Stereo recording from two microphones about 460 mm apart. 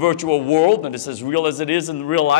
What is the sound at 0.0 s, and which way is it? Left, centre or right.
Speech, left.